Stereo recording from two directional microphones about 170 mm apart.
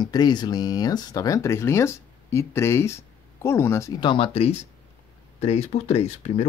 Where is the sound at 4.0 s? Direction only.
30° left (ahead or behind).